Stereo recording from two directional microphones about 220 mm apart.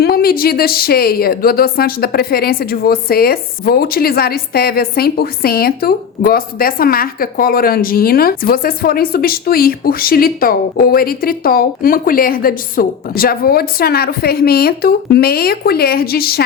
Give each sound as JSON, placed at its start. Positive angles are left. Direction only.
{"t": 0.0, "sound": "a woman's voice", "side_deg": 45}